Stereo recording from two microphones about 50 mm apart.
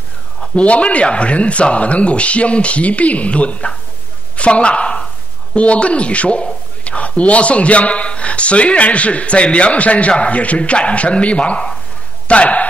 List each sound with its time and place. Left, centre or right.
0.4 s a man's voice: left